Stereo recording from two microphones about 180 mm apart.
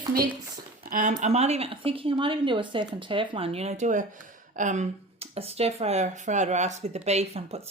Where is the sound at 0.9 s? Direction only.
45° right (ahead or behind).